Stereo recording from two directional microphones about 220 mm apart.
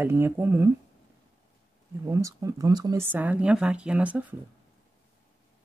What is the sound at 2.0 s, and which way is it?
Speech, 15° right (ahead or behind).